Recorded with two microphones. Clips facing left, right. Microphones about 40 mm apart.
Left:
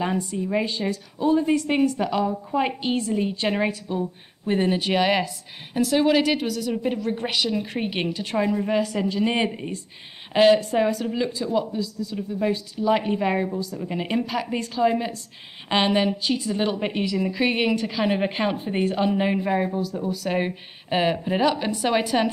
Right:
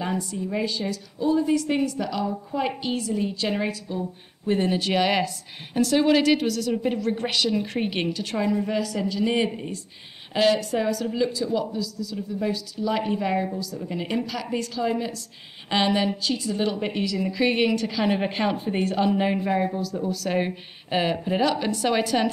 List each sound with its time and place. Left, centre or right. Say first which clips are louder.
0.0 s a woman's voice: left 3 dB; left
8.7 s a woman's voice: left 3 dB; left
11.1 s speech: right 1 dB; centre
11.3 s a woman's voice: left 1 dB; left